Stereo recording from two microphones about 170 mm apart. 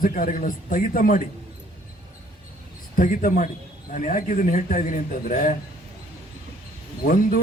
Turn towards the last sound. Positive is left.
turn(degrees=55)  # may be behind; listen again after turning